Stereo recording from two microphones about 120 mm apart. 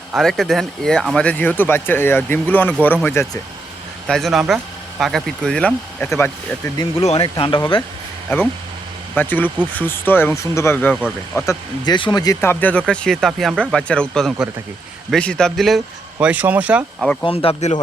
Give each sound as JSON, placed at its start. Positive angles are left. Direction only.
{"t": 0.2, "sound": "speech", "side_deg": 0}
{"t": 4.0, "sound": "speech", "side_deg": 0}
{"t": 7.0, "sound": "speech", "side_deg": 55}
{"t": 8.3, "sound": "speech", "side_deg": 20}
{"t": 11.9, "sound": "speech", "side_deg": 40}
{"t": 12.4, "sound": "speech", "side_deg": 15}
{"t": 16.2, "sound": "speech", "side_deg": -15}
{"t": 17.2, "sound": "speech", "side_deg": 50}